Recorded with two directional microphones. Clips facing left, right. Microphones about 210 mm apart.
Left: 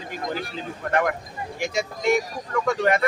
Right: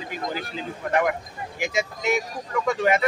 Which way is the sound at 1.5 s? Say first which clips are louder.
Even; centre (ahead or behind).